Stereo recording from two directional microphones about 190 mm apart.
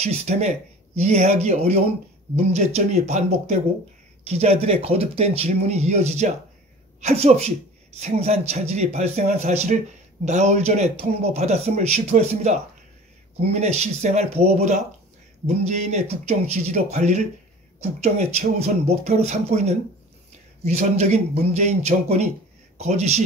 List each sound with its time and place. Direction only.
0.0 s speech: 35° right (ahead or behind)